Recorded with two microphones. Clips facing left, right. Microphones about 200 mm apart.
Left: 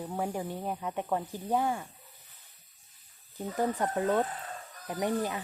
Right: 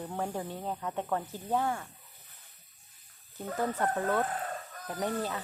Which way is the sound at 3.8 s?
15° left (ahead or behind).